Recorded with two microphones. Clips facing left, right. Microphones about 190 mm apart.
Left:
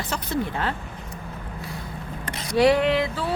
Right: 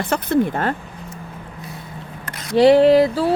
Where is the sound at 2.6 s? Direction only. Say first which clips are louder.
Right 8 dB; 30° right (ahead or behind).